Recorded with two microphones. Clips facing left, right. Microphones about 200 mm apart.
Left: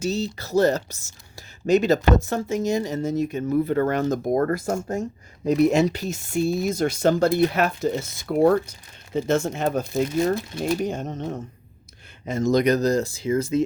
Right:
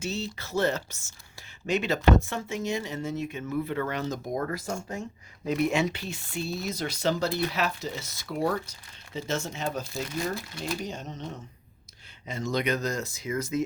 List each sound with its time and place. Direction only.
0.0 s speech: 40° left (ahead or behind)
5.5 s speech: 40° left (ahead or behind)
10.8 s speech: 50° left (ahead or behind); by 13.7 s 30° left (ahead or behind)